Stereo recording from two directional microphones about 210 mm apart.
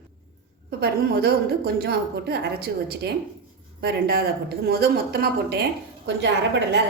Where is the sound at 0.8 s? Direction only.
45° right (ahead or behind).